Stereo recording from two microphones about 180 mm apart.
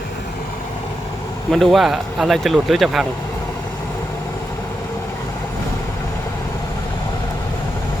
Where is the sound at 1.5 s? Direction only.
Centre (ahead or behind).